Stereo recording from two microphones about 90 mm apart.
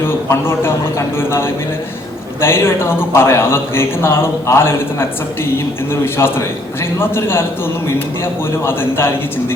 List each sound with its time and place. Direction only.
0.3 s a man's voice: 30° left (ahead or behind)